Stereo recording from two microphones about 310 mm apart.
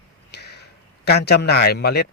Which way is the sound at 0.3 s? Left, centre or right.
Left.